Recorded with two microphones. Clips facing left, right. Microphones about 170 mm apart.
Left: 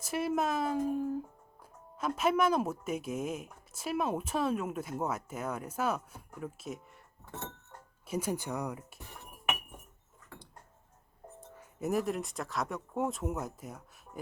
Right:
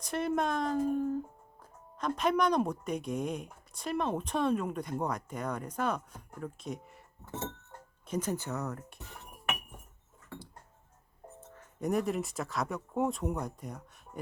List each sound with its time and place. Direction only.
0.0 s speech: 5° left (ahead or behind)
8.0 s speech: 10° left (ahead or behind)
11.3 s speech: 10° left (ahead or behind)